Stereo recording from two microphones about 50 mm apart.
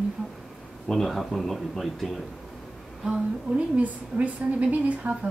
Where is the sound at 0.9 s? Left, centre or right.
Centre.